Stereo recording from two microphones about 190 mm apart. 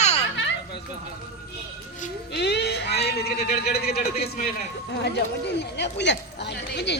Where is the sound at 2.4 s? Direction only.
60° left (ahead or behind).